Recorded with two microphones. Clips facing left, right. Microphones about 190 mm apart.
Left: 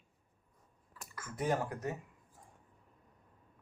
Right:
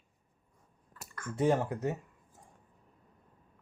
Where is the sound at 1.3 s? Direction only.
25° right (ahead or behind).